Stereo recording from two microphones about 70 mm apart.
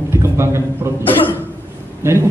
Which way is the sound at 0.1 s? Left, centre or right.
Right.